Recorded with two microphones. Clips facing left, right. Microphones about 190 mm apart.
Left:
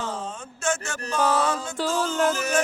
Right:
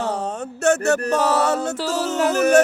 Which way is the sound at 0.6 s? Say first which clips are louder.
Right 11 dB; 65° right (ahead or behind).